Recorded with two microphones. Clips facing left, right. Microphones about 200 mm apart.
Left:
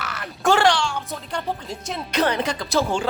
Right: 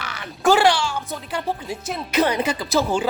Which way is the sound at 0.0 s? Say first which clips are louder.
Right 3 dB; centre (ahead or behind).